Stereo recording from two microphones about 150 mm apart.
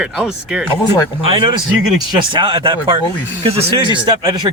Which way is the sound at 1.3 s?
35° right (ahead or behind).